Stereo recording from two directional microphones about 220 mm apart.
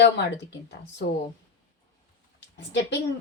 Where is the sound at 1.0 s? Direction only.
50° left (ahead or behind).